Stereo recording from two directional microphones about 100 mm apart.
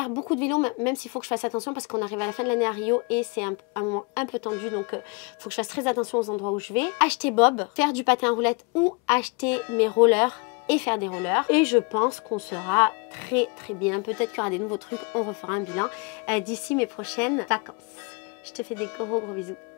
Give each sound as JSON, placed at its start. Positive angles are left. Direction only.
{"t": 0.0, "sound": "speech", "side_deg": 25}
{"t": 0.3, "sound": "speech", "side_deg": 15}
{"t": 6.6, "sound": "speech", "side_deg": 15}